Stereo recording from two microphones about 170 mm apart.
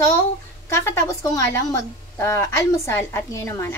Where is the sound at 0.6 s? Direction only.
20° left (ahead or behind).